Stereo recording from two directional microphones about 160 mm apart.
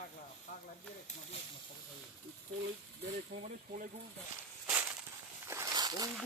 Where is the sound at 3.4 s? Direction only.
55° right (ahead or behind).